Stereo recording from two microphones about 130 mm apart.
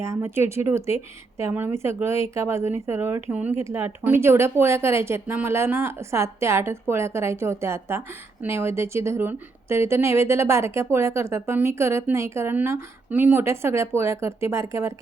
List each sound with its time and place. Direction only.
0.0 s a woman's voice: 20° right (ahead or behind)